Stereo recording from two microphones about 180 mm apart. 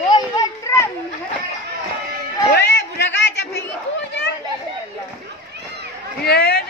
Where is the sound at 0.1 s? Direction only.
20° left (ahead or behind).